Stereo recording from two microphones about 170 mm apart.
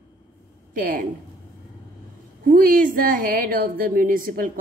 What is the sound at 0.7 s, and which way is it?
Speech, 55° right (ahead or behind).